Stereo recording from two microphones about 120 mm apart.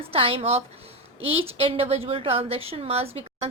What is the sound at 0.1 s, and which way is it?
A woman's voice, 55° right (ahead or behind).